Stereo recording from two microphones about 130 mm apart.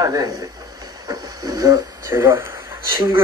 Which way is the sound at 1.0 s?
30° right (ahead or behind).